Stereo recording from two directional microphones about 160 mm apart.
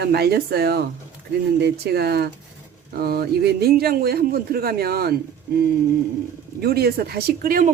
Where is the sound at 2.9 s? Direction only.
75° right (ahead or behind).